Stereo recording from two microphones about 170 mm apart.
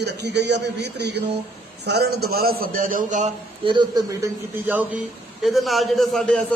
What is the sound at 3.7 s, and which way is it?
Speech, 25° right (ahead or behind).